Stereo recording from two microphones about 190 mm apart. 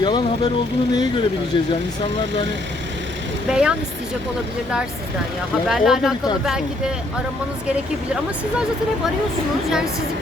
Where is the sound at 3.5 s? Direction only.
5° right (ahead or behind).